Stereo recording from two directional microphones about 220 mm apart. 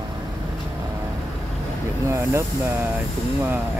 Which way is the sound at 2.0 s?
15° right (ahead or behind).